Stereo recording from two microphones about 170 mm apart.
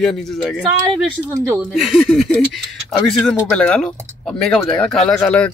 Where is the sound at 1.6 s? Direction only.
5° right (ahead or behind).